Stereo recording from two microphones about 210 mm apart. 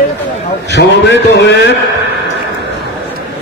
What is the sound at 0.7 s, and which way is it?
A man's voice, 55° left (ahead or behind).